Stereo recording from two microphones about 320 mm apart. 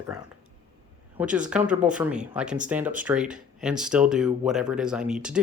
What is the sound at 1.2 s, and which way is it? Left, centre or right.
Speech, centre.